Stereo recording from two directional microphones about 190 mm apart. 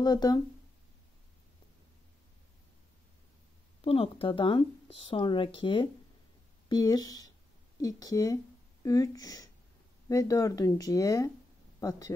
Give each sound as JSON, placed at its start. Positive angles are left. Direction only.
{"t": 0.0, "sound": "speech", "side_deg": 20}
{"t": 3.8, "sound": "speech", "side_deg": 30}